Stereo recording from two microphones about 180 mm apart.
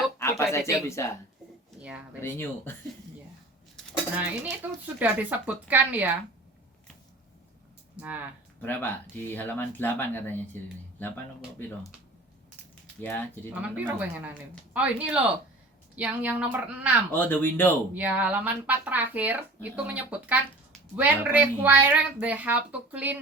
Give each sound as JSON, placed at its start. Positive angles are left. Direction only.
{"t": 0.2, "sound": "speech", "side_deg": 15}
{"t": 2.2, "sound": "speech", "side_deg": 15}
{"t": 4.6, "sound": "speech", "side_deg": -10}
{"t": 8.0, "sound": "speech", "side_deg": -5}
{"t": 8.6, "sound": "speech", "side_deg": 10}
{"t": 13.0, "sound": "speech", "side_deg": 10}
{"t": 13.5, "sound": "speech", "side_deg": -10}
{"t": 17.1, "sound": "speech", "side_deg": 10}
{"t": 17.9, "sound": "speech", "side_deg": -10}